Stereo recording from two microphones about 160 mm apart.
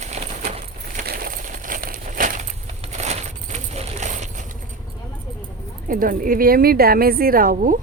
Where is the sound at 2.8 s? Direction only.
45° right (ahead or behind).